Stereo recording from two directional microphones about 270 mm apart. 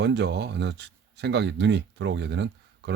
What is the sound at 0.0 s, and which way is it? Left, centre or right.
Speech, right.